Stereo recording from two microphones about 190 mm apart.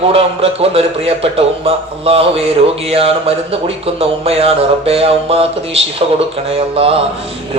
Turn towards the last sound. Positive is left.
turn(degrees=-30)  # may be behind; listen again after turning